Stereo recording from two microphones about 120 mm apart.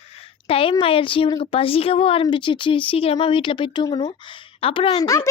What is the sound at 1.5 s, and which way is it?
Speech, 50° left (ahead or behind).